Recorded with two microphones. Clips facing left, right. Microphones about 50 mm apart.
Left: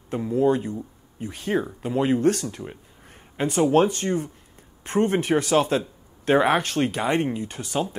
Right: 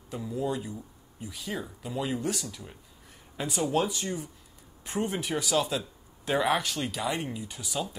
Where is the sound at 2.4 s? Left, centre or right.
Left.